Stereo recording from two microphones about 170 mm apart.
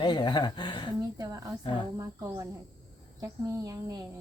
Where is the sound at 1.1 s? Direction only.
20° right (ahead or behind).